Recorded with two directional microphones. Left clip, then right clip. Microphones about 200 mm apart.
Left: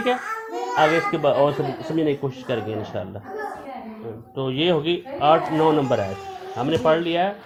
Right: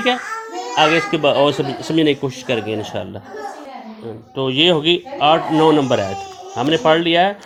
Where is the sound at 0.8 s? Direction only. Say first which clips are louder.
Right 4 dB; 40° right (ahead or behind).